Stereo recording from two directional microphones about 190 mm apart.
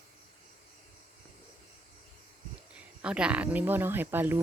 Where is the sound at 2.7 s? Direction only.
5° right (ahead or behind).